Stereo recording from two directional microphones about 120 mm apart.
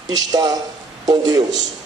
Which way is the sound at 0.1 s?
30° right (ahead or behind).